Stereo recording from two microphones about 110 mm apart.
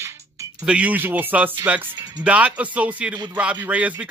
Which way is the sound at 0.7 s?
10° right (ahead or behind).